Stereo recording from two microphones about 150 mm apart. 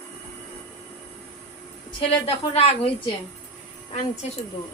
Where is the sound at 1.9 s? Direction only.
35° left (ahead or behind).